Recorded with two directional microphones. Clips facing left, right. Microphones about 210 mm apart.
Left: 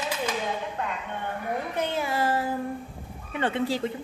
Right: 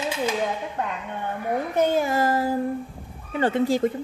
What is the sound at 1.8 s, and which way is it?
A woman's voice, 45° right (ahead or behind).